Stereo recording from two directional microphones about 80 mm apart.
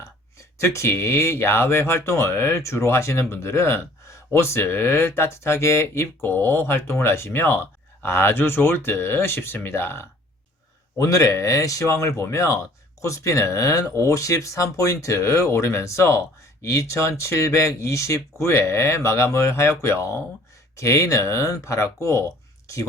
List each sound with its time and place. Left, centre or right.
0.6 s speech: left
10.9 s speech: left